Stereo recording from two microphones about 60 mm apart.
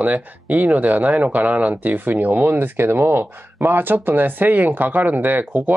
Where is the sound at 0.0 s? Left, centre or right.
Right.